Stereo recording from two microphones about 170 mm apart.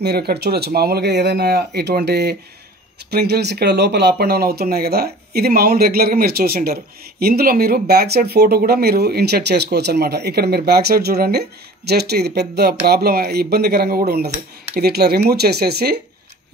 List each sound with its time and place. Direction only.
0.0 s speech: 70° right (ahead or behind)
4.2 s speech: 70° right (ahead or behind)